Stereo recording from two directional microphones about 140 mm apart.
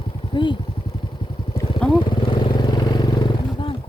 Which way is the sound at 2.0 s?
35° left (ahead or behind).